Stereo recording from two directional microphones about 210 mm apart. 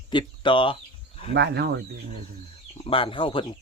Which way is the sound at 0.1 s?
25° left (ahead or behind).